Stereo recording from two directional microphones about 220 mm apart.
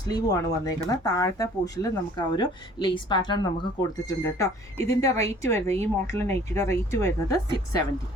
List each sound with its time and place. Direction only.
0.0 s speech: 15° left (ahead or behind)